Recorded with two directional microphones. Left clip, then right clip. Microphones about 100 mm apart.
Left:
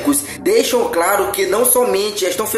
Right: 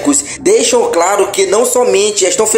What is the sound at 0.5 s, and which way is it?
Speech, 35° right (ahead or behind).